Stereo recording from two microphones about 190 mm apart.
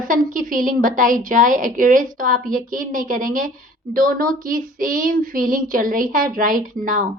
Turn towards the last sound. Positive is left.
turn(degrees=-45)  # may be behind; listen again after turning